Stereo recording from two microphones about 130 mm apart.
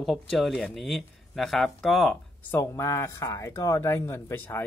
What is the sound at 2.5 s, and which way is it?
Speech, 20° left (ahead or behind).